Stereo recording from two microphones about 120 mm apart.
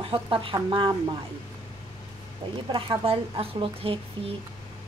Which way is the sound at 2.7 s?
50° right (ahead or behind).